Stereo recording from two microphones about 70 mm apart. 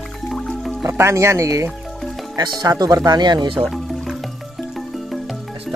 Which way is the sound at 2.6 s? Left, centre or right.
Right.